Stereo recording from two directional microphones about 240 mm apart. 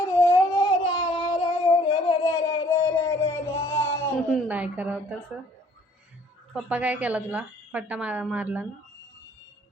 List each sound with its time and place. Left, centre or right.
0.3 s a sound: centre
4.3 s a woman's voice: centre
6.5 s a woman's voice: centre